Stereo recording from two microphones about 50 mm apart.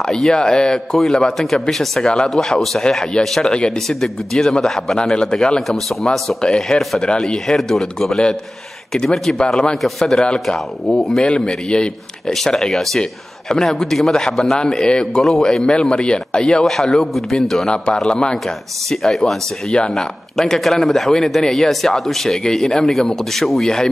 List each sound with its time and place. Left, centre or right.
0.0 s speech: centre
5.7 s speech: centre
6.4 s speech: centre
6.8 s speech: centre
7.1 s speech: centre
9.4 s speech: centre
9.8 s speech: centre
11.2 s a man's voice: centre
16.6 s speech: centre
18.9 s speech: centre